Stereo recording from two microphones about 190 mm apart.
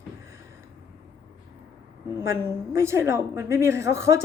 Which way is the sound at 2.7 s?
15° right (ahead or behind).